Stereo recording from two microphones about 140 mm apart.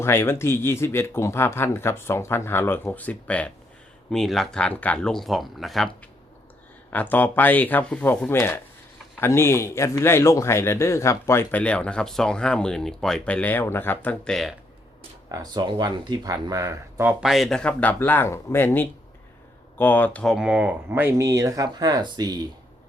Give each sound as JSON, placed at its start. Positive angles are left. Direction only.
{"t": 0.0, "sound": "speech", "side_deg": 15}
{"t": 6.9, "sound": "speech", "side_deg": 10}
{"t": 15.3, "sound": "speech", "side_deg": -30}
{"t": 17.1, "sound": "speech", "side_deg": -5}
{"t": 20.2, "sound": "speech", "side_deg": -5}